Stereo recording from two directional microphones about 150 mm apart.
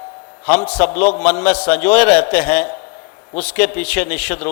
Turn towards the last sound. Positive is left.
turn(degrees=10)  # may be behind; listen again after turning